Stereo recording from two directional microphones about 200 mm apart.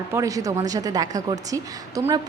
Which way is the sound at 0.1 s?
15° right (ahead or behind).